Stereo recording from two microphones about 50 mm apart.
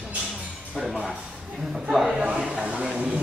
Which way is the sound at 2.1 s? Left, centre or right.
Centre.